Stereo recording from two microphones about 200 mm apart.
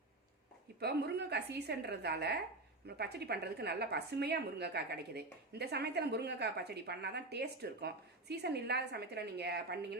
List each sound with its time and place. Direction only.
0.8 s a woman's voice: 55° right (ahead or behind)